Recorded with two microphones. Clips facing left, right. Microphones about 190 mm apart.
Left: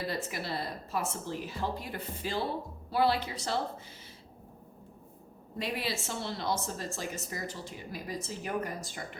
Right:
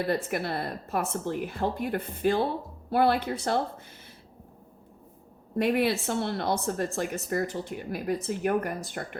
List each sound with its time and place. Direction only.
0.1 s a woman's voice: 55° right (ahead or behind)
5.5 s a woman's voice: 60° right (ahead or behind)